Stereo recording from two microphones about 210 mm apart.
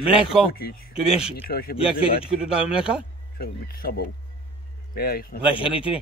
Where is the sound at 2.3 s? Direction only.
5° right (ahead or behind).